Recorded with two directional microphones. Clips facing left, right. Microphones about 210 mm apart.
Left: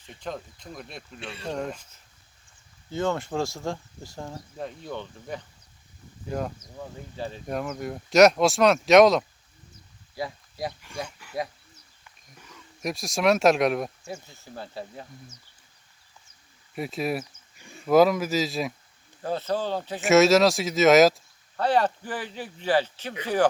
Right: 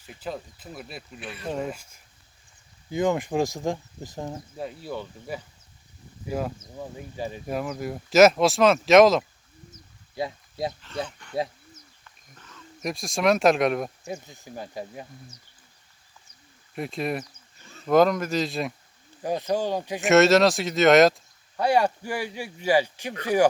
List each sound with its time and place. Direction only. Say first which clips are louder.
0.0 s speech: right 1 dB; 5° right (ahead or behind)
1.2 s speech: left 1 dB; 25° left (ahead or behind)
1.5 s speech: right 1 dB; 5° right (ahead or behind)
4.5 s speech: left 1 dB; 5° right (ahead or behind)
10.2 s a sound: right 3 dB; 20° right (ahead or behind)
10.8 s speech: right 3 dB; 10° left (ahead or behind)
14.1 s speech: right 3 dB; 15° right (ahead or behind)
16.7 s speech: even; centre (ahead or behind)
17.6 s speech: left 1 dB; 15° left (ahead or behind)
19.2 s speech: right 2 dB; 15° right (ahead or behind)
20.0 s speech: even; centre (ahead or behind)
21.5 s speech: right 1 dB; 10° right (ahead or behind)